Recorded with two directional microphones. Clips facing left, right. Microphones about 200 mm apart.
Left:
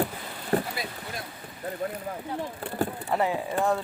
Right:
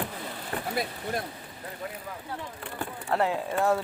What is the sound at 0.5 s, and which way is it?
Vehicle, 40° left (ahead or behind).